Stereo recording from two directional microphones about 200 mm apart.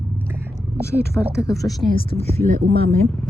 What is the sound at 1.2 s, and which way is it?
Speech, 10° left (ahead or behind).